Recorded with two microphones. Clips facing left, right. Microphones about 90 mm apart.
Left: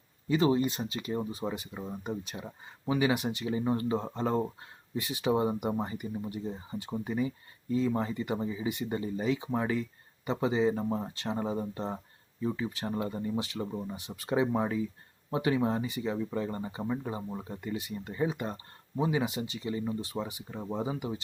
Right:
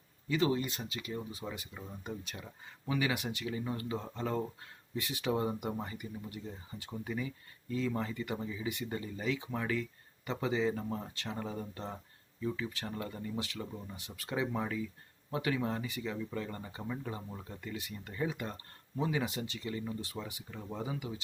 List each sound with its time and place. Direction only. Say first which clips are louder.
0.3 s speech: left 5 dB; 25° left (ahead or behind)